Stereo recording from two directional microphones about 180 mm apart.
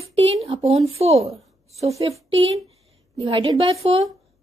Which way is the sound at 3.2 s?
30° right (ahead or behind).